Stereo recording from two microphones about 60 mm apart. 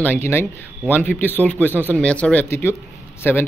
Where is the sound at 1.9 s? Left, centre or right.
Left.